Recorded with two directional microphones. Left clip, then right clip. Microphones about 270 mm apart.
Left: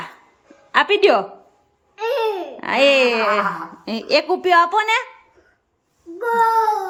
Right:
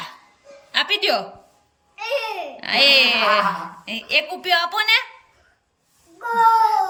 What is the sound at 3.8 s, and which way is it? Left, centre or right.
A woman's voice, left.